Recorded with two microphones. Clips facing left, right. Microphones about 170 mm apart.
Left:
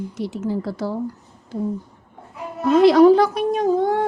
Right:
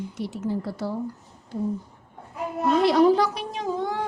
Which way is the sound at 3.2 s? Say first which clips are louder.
Left 10 dB; 50° left (ahead or behind).